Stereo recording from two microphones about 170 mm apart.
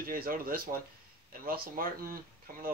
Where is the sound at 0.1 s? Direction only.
55° right (ahead or behind).